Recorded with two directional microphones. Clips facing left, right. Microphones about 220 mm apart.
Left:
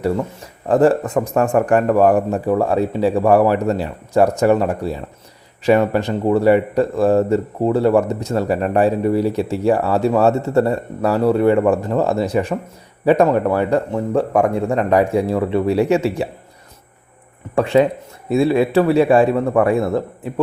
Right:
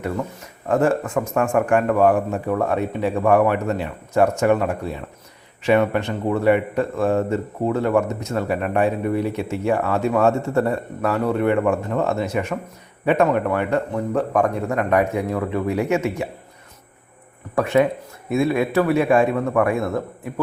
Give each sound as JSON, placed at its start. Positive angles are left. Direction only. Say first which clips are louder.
{"t": 0.7, "sound": "speech", "louder": "left 5 dB", "side_deg": 35}
{"t": 17.5, "sound": "speech", "louder": "left 3 dB", "side_deg": 30}